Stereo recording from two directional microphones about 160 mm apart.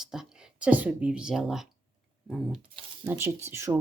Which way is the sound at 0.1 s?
5° right (ahead or behind).